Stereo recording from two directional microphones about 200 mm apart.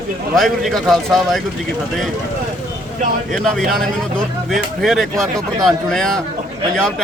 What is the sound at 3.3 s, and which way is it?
Speech, centre (ahead or behind).